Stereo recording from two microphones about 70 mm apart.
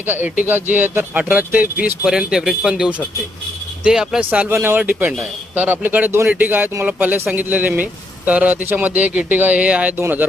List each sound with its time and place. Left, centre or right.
0.0 s speech: right
2.0 s a man's voice: centre
4.2 s speech: centre
4.4 s speech: right